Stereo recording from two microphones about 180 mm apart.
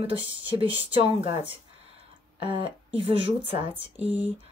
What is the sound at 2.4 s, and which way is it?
Speech, 30° right (ahead or behind).